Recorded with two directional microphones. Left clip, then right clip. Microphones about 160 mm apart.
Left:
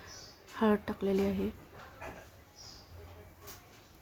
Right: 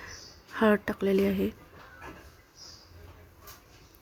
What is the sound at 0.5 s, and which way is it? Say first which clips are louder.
Speech: right 6 dB; 25° right (ahead or behind).